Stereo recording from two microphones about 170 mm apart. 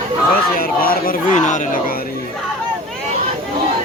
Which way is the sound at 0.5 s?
60° left (ahead or behind).